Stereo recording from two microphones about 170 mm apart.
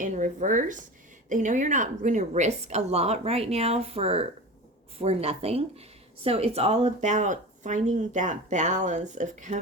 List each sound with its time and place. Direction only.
0.0 s a woman's voice: 50° right (ahead or behind)